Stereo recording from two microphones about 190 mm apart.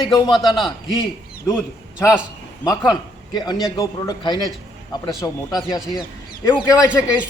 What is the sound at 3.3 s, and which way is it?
A man's voice, 20° left (ahead or behind).